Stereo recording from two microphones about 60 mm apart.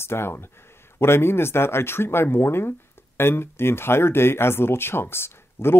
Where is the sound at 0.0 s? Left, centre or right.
Left.